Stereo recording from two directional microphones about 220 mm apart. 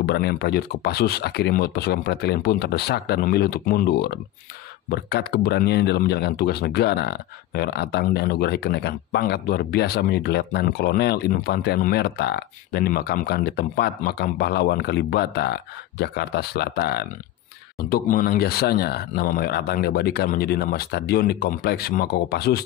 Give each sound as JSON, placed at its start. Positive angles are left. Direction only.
{"t": 0.0, "sound": "speech", "side_deg": 45}